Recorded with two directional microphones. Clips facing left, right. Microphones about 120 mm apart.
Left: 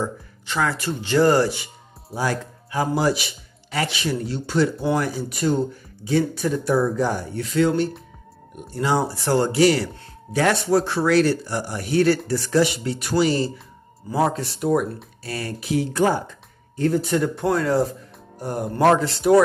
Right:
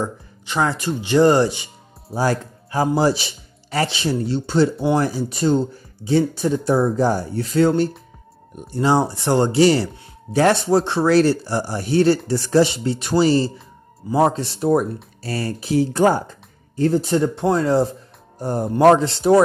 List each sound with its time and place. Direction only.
0.0 s speech: 20° right (ahead or behind)
2.1 s speech: 35° right (ahead or behind)